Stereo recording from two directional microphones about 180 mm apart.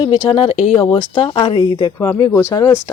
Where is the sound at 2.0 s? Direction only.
15° left (ahead or behind).